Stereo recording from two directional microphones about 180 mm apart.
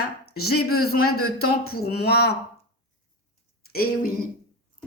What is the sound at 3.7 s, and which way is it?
Speech, 55° left (ahead or behind).